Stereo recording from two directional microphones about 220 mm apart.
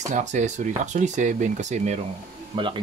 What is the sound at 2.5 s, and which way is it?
Speech, 20° right (ahead or behind).